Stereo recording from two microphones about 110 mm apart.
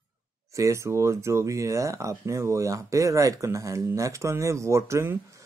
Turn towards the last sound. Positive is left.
turn(degrees=-25)  # may be behind; listen again after turning